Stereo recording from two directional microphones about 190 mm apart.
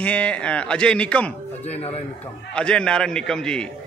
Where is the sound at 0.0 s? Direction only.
5° left (ahead or behind).